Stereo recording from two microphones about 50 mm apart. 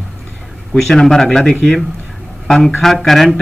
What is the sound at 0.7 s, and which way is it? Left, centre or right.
A man's voice, centre.